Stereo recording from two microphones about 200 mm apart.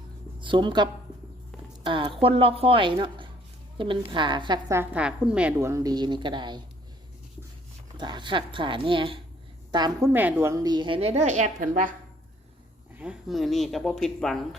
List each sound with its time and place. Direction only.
0.3 s a woman's voice: 25° right (ahead or behind)
7.9 s a woman's voice: 20° right (ahead or behind); by 11.9 s 40° right (ahead or behind)
12.9 s speech: 5° right (ahead or behind)